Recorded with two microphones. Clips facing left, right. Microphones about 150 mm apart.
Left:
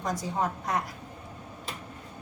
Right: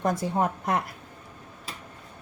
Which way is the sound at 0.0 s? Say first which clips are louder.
Right 4 dB; 55° right (ahead or behind).